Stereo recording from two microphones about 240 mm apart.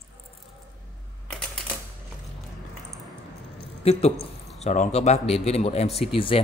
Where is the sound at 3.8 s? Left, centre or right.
Left.